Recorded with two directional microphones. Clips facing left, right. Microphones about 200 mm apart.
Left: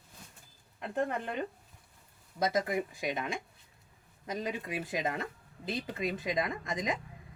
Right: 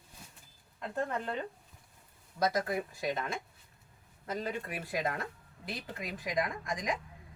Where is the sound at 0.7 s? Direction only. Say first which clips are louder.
Left 2 dB; 20° left (ahead or behind).